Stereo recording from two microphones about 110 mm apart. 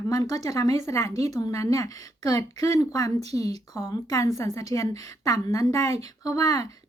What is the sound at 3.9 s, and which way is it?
A woman's voice, 30° left (ahead or behind).